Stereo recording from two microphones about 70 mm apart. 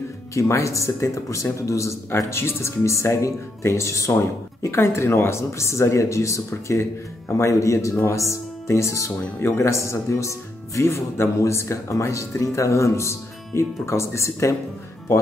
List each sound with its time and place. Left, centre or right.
0.3 s speech: left